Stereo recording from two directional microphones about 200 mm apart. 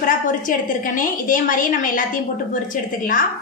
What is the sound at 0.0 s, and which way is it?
A woman's voice, 40° left (ahead or behind).